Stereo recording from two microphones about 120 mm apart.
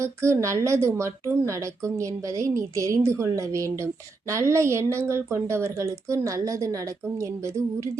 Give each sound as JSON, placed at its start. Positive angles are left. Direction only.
{"t": 0.0, "sound": "a woman's voice", "side_deg": -25}